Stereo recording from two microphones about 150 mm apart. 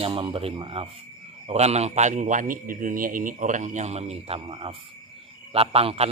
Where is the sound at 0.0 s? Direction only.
35° right (ahead or behind).